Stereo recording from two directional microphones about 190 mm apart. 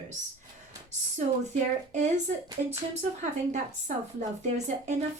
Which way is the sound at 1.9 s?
40° right (ahead or behind).